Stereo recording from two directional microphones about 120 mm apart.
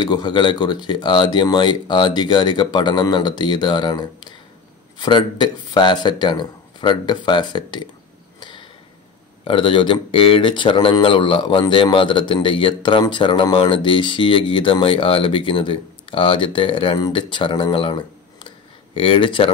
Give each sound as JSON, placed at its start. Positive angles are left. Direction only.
{"t": 0.0, "sound": "speech", "side_deg": 35}
{"t": 8.4, "sound": "tick-tock", "side_deg": 40}
{"t": 9.4, "sound": "speech", "side_deg": 45}